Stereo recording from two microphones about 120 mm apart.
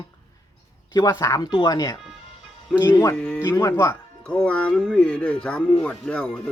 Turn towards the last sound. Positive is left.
turn(degrees=10)  # may be behind; listen again after turning